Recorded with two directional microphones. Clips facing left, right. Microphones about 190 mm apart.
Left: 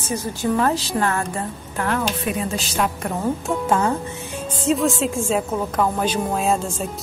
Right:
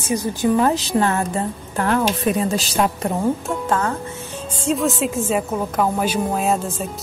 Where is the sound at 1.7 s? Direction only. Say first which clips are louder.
Right 4 dB; 35° right (ahead or behind).